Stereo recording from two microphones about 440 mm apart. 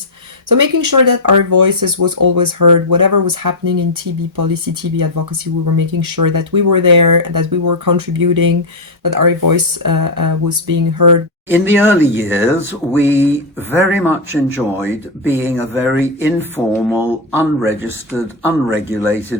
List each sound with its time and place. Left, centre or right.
0.4 s speech: right
11.4 s speech: centre